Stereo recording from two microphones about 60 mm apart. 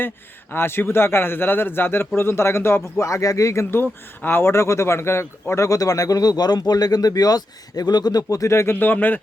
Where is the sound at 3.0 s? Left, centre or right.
Left.